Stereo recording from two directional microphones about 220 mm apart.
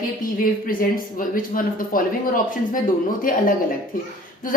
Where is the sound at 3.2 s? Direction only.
40° left (ahead or behind).